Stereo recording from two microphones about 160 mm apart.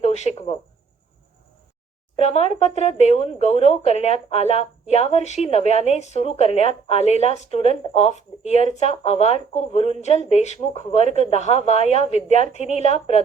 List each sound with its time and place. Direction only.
0.0 s speech: 45° left (ahead or behind)
2.1 s speech: 40° left (ahead or behind)